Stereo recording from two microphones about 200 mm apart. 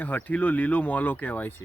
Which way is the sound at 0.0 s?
10° left (ahead or behind).